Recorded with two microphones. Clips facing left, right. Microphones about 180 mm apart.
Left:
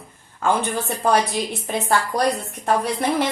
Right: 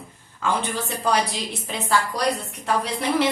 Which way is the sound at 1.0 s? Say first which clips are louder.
Left 4 dB; 50° left (ahead or behind).